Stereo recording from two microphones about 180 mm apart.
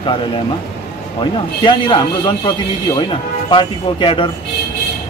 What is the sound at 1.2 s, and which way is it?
Speech, 25° left (ahead or behind).